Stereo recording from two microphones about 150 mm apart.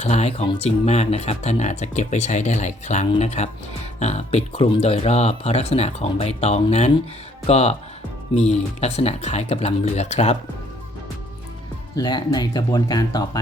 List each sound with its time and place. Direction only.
0.0 s speech: 45° left (ahead or behind)
11.9 s speech: 30° left (ahead or behind)